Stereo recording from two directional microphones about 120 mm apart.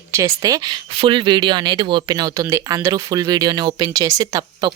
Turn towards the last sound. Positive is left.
turn(degrees=-35)  # may be behind; listen again after turning